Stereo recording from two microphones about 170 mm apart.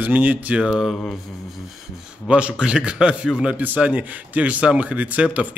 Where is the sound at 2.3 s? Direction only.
5° right (ahead or behind).